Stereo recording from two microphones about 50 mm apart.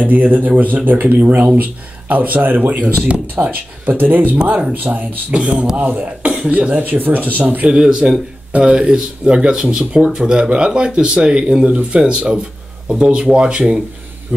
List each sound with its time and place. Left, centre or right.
0.0 s speech: right
5.3 s speech: right
5.8 s speech: right